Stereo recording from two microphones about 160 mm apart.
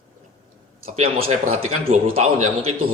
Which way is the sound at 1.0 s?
40° right (ahead or behind).